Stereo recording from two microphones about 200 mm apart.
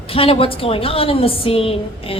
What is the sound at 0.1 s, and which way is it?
A woman's voice, 30° left (ahead or behind).